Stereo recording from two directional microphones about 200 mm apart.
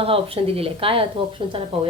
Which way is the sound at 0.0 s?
30° right (ahead or behind).